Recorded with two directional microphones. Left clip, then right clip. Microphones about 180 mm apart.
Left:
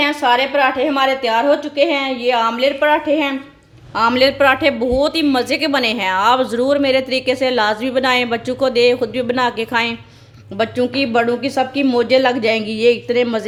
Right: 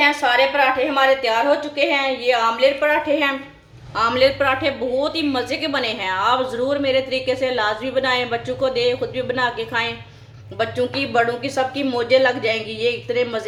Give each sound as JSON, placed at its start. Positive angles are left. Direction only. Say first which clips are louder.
{"t": 0.0, "sound": "a woman's voice", "louder": "left 1 dB", "side_deg": 45}